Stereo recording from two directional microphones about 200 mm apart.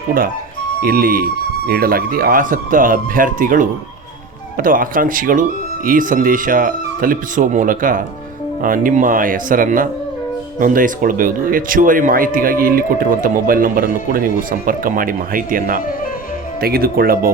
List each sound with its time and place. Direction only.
0.8 s speech: 45° right (ahead or behind)